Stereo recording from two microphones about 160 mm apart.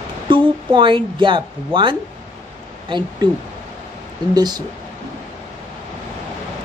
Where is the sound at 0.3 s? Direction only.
30° right (ahead or behind).